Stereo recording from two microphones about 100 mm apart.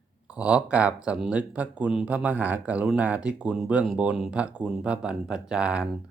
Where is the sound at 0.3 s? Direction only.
10° right (ahead or behind).